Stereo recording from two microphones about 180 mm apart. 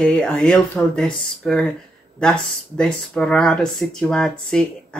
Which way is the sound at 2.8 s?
5° left (ahead or behind).